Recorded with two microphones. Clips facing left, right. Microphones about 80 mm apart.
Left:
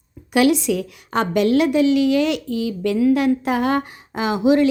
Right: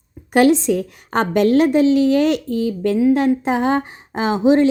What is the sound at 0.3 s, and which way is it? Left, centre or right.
A woman's voice, right.